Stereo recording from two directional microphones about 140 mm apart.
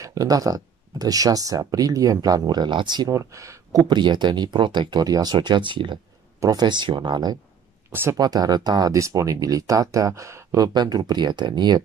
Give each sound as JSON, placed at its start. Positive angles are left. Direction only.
{"t": 0.0, "sound": "speech", "side_deg": -25}
{"t": 7.9, "sound": "speech", "side_deg": -15}
{"t": 8.2, "sound": "speech", "side_deg": -30}